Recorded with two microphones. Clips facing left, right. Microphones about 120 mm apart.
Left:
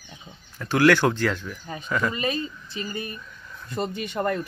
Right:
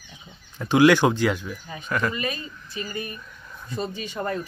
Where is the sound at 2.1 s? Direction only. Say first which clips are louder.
Left 3 dB; 30° left (ahead or behind).